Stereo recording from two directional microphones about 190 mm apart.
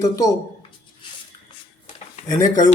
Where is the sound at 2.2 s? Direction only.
20° left (ahead or behind).